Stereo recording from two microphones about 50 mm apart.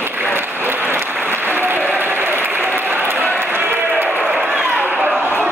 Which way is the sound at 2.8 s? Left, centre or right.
Right.